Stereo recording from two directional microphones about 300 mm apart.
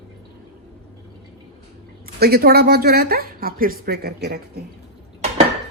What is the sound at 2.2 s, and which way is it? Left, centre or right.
Speech, right.